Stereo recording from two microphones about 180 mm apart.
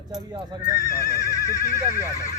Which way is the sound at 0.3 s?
25° right (ahead or behind).